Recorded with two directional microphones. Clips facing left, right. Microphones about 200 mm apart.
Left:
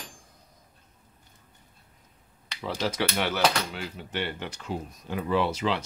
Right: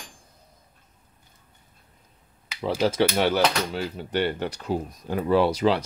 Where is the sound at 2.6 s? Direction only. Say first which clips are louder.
Right 7 dB; 30° right (ahead or behind).